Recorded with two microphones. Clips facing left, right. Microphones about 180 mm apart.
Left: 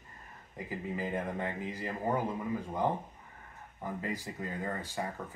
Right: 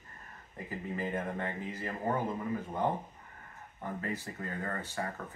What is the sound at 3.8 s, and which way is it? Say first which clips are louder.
Speech: even; 15° left (ahead or behind).